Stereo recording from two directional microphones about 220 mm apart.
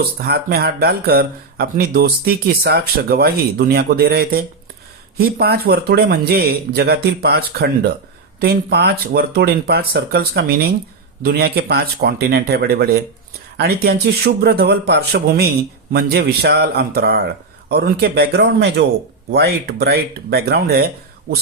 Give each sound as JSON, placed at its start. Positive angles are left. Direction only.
{"t": 0.0, "sound": "speech", "side_deg": -45}